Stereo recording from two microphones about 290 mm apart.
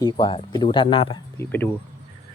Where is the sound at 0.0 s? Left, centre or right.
Centre.